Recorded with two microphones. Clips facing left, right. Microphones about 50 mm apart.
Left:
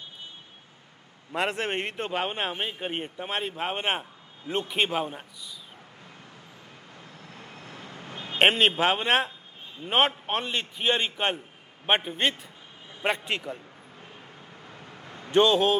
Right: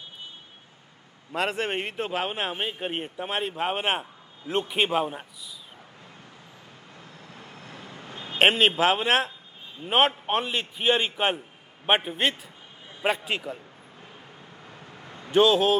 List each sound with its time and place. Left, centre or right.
1.3 s a man's voice: centre
8.1 s vehicle: left
8.4 s a man's voice: centre
15.3 s a man's voice: centre